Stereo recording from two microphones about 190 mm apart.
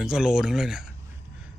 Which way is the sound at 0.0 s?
5° right (ahead or behind).